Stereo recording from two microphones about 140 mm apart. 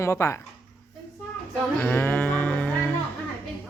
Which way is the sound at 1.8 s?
10° left (ahead or behind).